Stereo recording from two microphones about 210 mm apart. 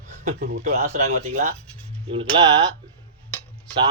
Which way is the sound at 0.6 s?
30° right (ahead or behind).